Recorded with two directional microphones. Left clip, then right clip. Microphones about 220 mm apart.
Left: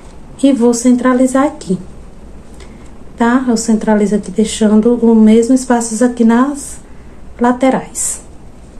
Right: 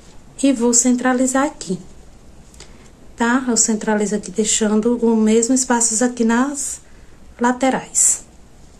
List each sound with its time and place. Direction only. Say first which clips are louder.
0.4 s a woman's voice: left 5 dB; 20° right (ahead or behind)
3.2 s a woman's voice: left 4 dB; 20° right (ahead or behind)